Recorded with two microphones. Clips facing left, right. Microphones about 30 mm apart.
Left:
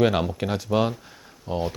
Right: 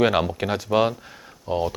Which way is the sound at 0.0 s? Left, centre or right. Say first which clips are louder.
Right 1 dB; centre.